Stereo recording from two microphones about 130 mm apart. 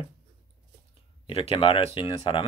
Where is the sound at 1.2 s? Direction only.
45° left (ahead or behind).